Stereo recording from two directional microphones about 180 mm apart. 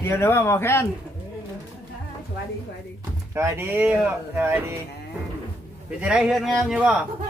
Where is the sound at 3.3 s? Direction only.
15° right (ahead or behind).